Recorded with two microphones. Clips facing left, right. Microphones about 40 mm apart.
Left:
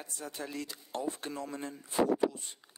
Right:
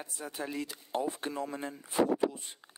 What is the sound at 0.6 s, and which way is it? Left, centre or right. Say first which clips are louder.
A man's voice: right 3 dB; centre.